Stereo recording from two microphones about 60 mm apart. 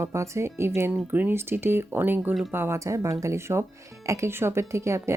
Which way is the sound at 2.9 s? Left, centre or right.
Right.